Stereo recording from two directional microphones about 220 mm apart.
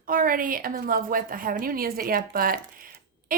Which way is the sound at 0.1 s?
40° right (ahead or behind).